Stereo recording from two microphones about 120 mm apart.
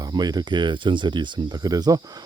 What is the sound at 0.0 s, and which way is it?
Speech, 35° right (ahead or behind).